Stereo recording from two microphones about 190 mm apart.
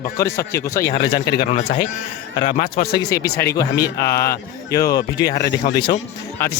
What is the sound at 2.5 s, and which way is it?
Speech, 45° left (ahead or behind).